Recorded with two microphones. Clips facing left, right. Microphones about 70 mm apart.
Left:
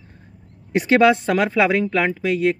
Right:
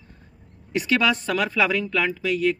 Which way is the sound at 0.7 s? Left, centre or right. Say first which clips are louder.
Left 7 dB; left.